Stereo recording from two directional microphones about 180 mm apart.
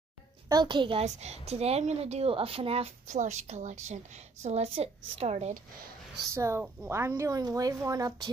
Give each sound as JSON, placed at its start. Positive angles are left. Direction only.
{"t": 0.5, "sound": "a woman's voice", "side_deg": -25}
{"t": 6.3, "sound": "a woman's voice", "side_deg": -15}